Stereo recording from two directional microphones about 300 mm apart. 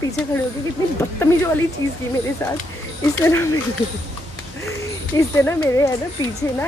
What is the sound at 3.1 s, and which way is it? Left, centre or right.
Speech, centre.